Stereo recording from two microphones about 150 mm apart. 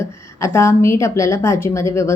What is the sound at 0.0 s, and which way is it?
A woman's voice, 20° left (ahead or behind).